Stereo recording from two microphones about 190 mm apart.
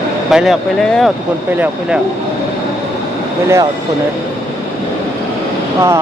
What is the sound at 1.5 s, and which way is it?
Speech, 10° right (ahead or behind).